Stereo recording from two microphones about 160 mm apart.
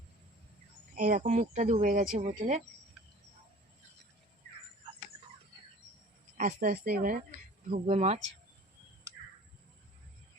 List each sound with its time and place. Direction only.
0.9 s speech: 60° right (ahead or behind)
6.3 s speech: 55° right (ahead or behind)
7.9 s speech: 45° right (ahead or behind)